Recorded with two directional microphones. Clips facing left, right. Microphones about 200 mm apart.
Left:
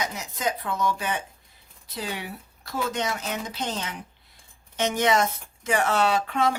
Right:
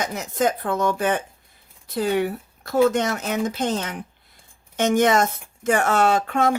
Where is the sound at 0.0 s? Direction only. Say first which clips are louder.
Right 7 dB; 50° right (ahead or behind).